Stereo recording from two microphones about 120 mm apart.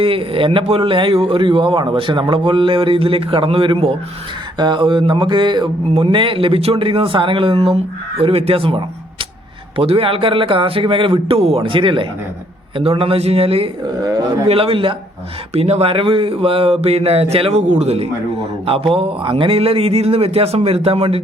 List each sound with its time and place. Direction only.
0.0 s speech: 50° right (ahead or behind)
4.5 s a sound: 40° right (ahead or behind)
5.9 s speech: 45° right (ahead or behind)
14.0 s a sound: 30° right (ahead or behind)
14.4 s speech: 50° right (ahead or behind)
15.5 s speech: 65° right (ahead or behind)